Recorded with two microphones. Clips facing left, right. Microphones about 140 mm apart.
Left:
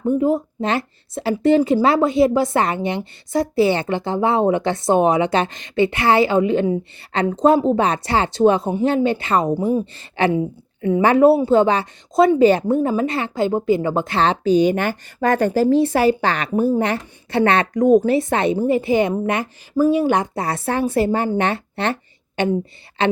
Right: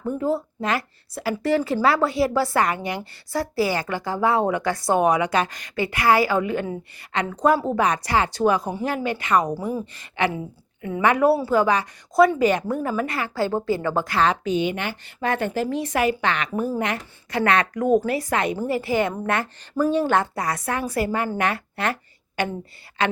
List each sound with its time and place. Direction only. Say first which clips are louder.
0.0 s a woman's voice: left 6 dB; 20° left (ahead or behind)
19.7 s speech: left 4 dB; 10° left (ahead or behind)
20.4 s a woman's voice: left 5 dB; 30° left (ahead or behind)